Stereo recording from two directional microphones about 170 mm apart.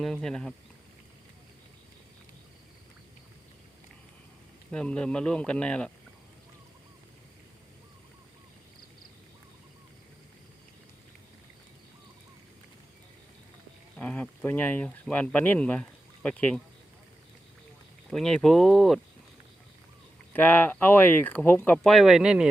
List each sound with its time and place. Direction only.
0.0 s speech: centre (ahead or behind)
4.7 s speech: 5° left (ahead or behind)
13.9 s speech: 10° left (ahead or behind)
18.1 s speech: 5° left (ahead or behind)
20.3 s speech: 10° left (ahead or behind); by 22.4 s 5° right (ahead or behind)